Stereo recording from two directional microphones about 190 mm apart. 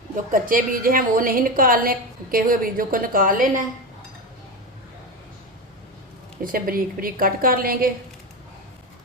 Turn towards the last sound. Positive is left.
turn(degrees=-50)  # may be behind; listen again after turning